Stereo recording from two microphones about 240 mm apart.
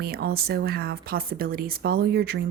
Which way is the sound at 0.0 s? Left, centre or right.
Right.